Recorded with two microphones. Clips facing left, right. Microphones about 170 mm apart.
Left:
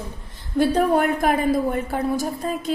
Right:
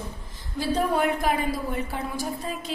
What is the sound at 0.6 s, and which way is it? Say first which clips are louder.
Speech: left 5 dB; 50° left (ahead or behind).